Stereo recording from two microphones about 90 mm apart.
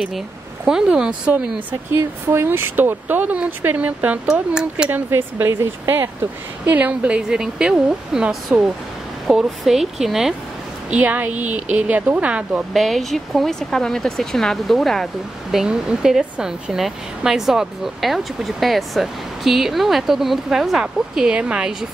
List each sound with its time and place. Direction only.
0.7 s a woman's voice: 10° right (ahead or behind)
1.9 s speech: 30° right (ahead or behind); by 4.9 s 10° right (ahead or behind)
4.9 s speech: 25° right (ahead or behind)
6.6 s a woman's voice: 20° right (ahead or behind)
10.9 s a woman's voice: 15° right (ahead or behind)
12.7 s speech: centre (ahead or behind)
15.5 s speech: 10° right (ahead or behind)